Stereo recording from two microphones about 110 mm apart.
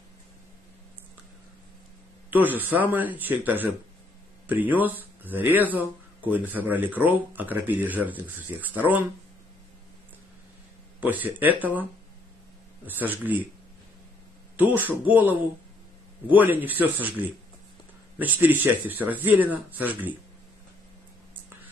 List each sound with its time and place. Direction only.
2.3 s speech: 15° right (ahead or behind)
11.0 s speech: 15° right (ahead or behind)
15.0 s speech: 15° right (ahead or behind)
18.1 s speech: 15° right (ahead or behind)